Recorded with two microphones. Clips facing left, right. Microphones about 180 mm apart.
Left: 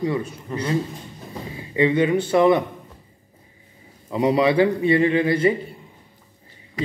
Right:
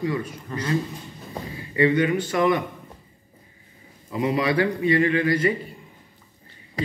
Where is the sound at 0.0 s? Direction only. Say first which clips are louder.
Left 2 dB; 25° left (ahead or behind).